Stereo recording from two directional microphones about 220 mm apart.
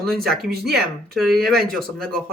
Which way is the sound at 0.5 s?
45° right (ahead or behind).